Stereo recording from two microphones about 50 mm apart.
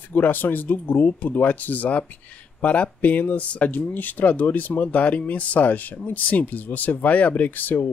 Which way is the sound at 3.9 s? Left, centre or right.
Left.